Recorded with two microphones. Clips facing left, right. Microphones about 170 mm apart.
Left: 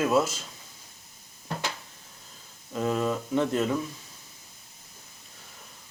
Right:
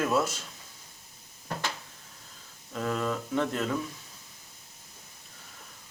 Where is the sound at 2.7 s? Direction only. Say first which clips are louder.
Left 3 dB; 15° left (ahead or behind).